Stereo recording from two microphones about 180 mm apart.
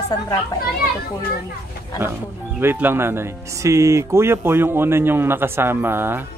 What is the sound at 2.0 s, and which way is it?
Speech, 10° right (ahead or behind).